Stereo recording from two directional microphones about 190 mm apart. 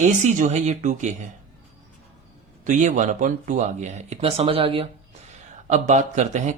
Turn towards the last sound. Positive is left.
turn(degrees=-40)  # may be behind; listen again after turning